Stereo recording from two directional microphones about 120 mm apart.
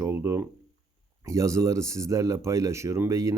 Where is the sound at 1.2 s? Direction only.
25° right (ahead or behind).